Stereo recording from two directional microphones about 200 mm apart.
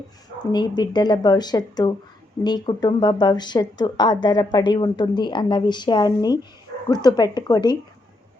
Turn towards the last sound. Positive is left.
turn(degrees=20)  # may be behind; listen again after turning